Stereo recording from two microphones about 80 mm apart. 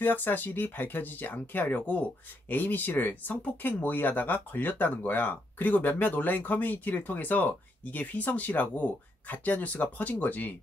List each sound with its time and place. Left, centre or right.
0.0 s speech: left